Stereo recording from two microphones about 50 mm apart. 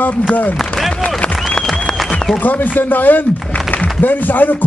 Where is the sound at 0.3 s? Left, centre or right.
Left.